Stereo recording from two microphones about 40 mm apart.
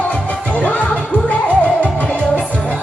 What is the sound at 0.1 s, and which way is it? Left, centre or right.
Music, left.